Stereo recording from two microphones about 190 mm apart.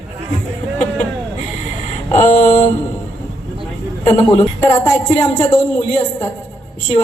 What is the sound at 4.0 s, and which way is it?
A woman's voice, 25° left (ahead or behind).